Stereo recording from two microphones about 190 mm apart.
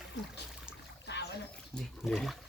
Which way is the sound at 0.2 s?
70° left (ahead or behind).